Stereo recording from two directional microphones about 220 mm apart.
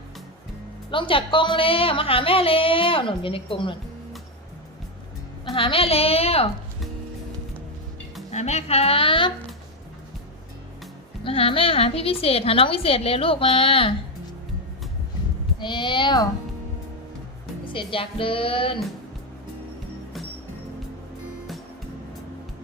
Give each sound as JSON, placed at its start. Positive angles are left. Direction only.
{"t": 0.9, "sound": "a woman's voice", "side_deg": 25}
{"t": 5.5, "sound": "a woman's voice", "side_deg": 25}
{"t": 8.3, "sound": "a woman's voice", "side_deg": 30}
{"t": 11.2, "sound": "a woman's voice", "side_deg": 25}
{"t": 15.6, "sound": "a woman's voice", "side_deg": 20}
{"t": 17.7, "sound": "a woman's voice", "side_deg": 25}